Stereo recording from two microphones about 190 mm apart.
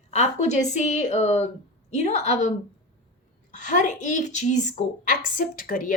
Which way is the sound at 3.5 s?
40° left (ahead or behind).